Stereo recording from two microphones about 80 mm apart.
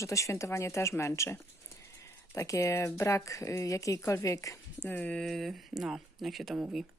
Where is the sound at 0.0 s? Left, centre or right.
Left.